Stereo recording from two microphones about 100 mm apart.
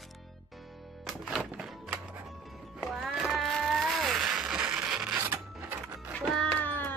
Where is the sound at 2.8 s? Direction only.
5° right (ahead or behind).